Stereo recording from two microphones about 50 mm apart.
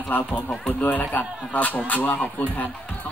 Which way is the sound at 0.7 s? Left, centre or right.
Left.